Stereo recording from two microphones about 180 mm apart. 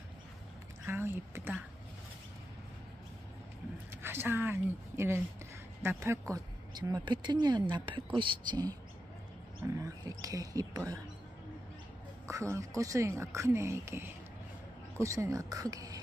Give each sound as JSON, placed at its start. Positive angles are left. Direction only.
{"t": 0.8, "sound": "speech", "side_deg": -15}
{"t": 4.0, "sound": "speech", "side_deg": -10}
{"t": 12.3, "sound": "speech", "side_deg": -15}